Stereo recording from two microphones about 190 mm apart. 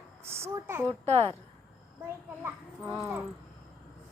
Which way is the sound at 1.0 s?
35° right (ahead or behind).